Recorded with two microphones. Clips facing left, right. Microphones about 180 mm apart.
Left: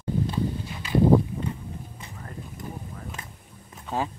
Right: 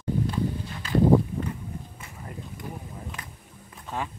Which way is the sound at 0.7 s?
15° left (ahead or behind).